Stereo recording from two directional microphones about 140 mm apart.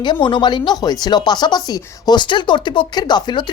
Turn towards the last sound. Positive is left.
turn(degrees=30)  # may be behind; listen again after turning